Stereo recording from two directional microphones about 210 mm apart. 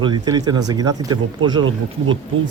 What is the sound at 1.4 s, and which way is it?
Speech, 75° right (ahead or behind).